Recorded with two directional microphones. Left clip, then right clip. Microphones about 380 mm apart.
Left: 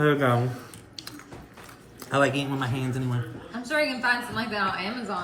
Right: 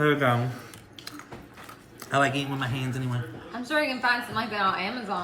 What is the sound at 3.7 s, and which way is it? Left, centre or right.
A woman's voice, centre.